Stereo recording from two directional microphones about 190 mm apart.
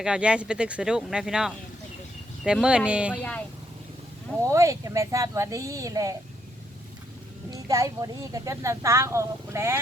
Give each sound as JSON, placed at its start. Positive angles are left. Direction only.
{"t": 0.0, "sound": "speech", "side_deg": -5}
{"t": 4.4, "sound": "speech", "side_deg": -15}
{"t": 7.5, "sound": "speech", "side_deg": -15}